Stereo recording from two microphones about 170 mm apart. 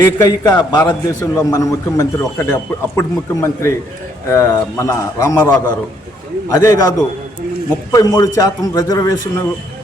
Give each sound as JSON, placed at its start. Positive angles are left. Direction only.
{"t": 0.0, "sound": "a man's voice", "side_deg": 25}
{"t": 7.9, "sound": "a man's voice", "side_deg": 20}